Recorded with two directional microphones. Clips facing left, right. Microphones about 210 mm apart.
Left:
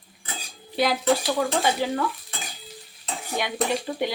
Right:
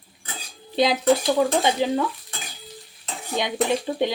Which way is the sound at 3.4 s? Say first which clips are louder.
Right 3 dB; 20° right (ahead or behind).